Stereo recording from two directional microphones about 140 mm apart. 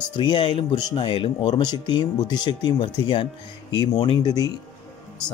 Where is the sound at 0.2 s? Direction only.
35° left (ahead or behind).